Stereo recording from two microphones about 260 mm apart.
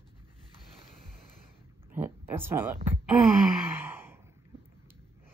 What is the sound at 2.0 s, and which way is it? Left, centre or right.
Speech, centre.